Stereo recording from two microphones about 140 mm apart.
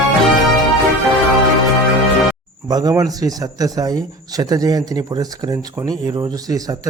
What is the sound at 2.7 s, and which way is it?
A man's voice, 30° right (ahead or behind).